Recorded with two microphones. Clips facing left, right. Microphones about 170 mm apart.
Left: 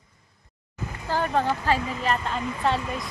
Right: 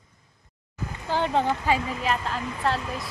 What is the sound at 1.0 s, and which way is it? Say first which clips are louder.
Speech: even; 20° right (ahead or behind).